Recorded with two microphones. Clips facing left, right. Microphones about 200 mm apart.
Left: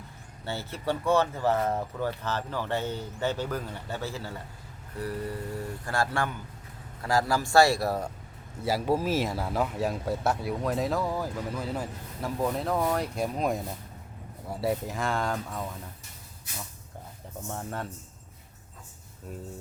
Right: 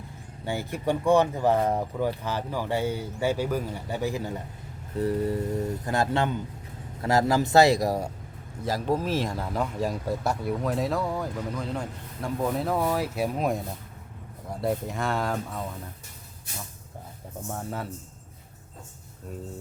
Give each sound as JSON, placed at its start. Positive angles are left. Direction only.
{"t": 0.4, "sound": "speech", "side_deg": -15}
{"t": 8.6, "sound": "speech", "side_deg": 5}
{"t": 17.5, "sound": "speech", "side_deg": -5}